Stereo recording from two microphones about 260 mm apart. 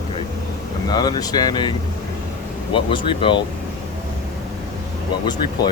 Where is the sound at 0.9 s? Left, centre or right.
Centre.